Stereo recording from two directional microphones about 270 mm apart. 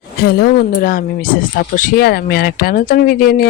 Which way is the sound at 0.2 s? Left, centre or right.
Left.